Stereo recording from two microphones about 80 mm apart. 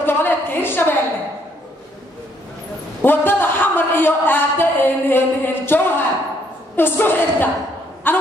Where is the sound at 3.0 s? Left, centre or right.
Left.